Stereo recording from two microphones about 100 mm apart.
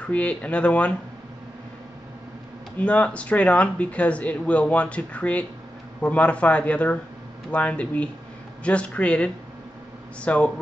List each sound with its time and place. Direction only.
0.0 s speech: 15° left (ahead or behind)
2.8 s speech: 10° left (ahead or behind)